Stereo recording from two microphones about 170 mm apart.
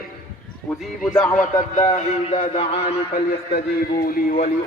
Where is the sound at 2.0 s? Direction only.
35° left (ahead or behind).